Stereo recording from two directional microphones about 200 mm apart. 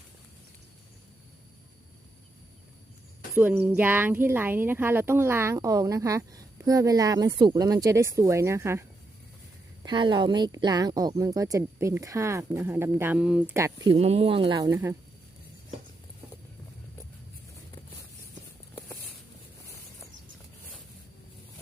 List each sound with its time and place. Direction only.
3.3 s speech: 10° right (ahead or behind)
9.8 s speech: 25° right (ahead or behind)
18.7 s patter: 10° left (ahead or behind)